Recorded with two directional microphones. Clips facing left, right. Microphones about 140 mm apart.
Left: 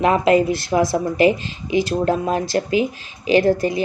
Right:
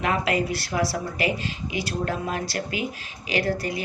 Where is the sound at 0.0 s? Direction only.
30° left (ahead or behind).